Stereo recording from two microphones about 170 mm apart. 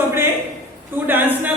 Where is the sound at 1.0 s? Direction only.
10° right (ahead or behind).